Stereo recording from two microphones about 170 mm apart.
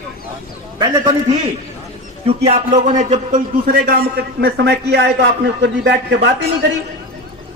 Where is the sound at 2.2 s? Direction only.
40° right (ahead or behind); by 6.2 s 85° right.